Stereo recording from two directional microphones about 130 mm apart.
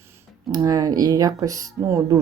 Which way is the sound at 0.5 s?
30° right (ahead or behind).